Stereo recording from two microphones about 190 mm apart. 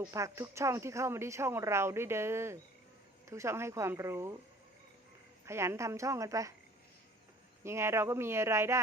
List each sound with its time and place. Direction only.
0.0 s speech: 15° right (ahead or behind)
5.5 s speech: 15° right (ahead or behind)
7.6 s speech: 15° right (ahead or behind)